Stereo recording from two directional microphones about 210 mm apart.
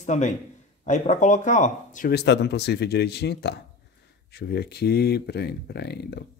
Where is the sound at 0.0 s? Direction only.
35° left (ahead or behind).